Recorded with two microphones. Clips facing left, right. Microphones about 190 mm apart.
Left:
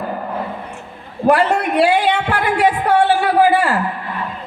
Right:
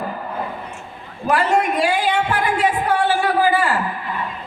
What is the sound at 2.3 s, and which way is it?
Music, 65° left (ahead or behind).